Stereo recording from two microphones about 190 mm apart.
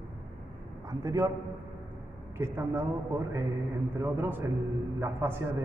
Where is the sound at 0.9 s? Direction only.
20° right (ahead or behind).